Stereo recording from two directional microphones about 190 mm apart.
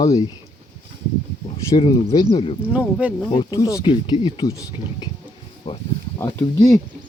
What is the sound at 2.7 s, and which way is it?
Speech, 10° right (ahead or behind).